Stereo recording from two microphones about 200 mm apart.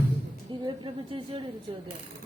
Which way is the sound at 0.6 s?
25° right (ahead or behind).